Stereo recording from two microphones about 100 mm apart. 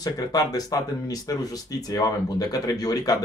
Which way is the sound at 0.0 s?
40° left (ahead or behind).